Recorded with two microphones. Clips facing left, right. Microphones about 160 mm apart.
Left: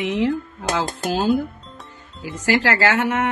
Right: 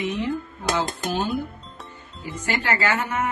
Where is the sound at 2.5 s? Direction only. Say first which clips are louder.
Left 6 dB; 90° left.